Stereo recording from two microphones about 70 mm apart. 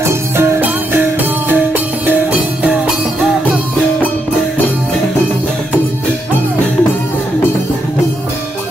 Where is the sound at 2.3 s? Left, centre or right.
Centre.